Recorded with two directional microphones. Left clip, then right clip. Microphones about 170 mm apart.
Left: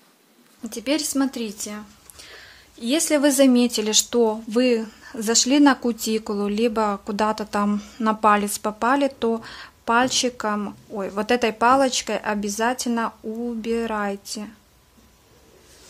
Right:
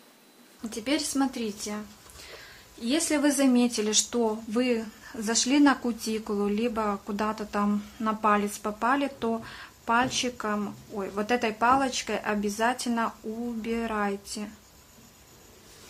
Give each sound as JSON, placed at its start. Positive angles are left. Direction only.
{"t": 0.7, "sound": "speech", "side_deg": 40}
{"t": 2.8, "sound": "speech", "side_deg": 45}